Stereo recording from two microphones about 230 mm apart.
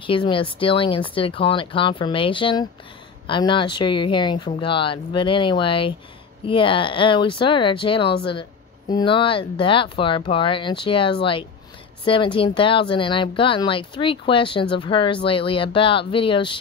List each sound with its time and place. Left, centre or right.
0.0 s speech: left